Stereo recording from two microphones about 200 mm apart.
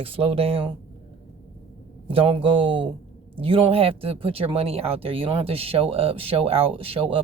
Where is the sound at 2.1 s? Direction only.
25° right (ahead or behind).